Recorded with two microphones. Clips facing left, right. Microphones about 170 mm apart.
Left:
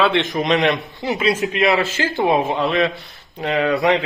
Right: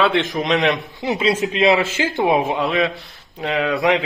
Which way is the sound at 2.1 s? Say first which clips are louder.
Even; 5° right (ahead or behind).